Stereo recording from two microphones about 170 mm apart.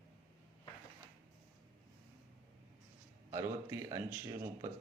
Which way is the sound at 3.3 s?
15° right (ahead or behind).